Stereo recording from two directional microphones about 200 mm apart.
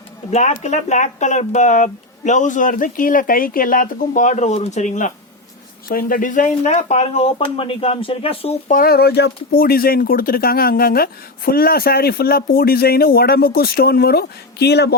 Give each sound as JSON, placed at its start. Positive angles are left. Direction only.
{"t": 0.3, "sound": "speech", "side_deg": 35}